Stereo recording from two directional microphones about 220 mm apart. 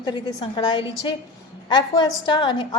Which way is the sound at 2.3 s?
20° left (ahead or behind).